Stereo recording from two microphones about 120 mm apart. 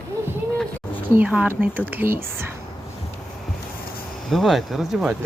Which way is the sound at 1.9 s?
15° right (ahead or behind).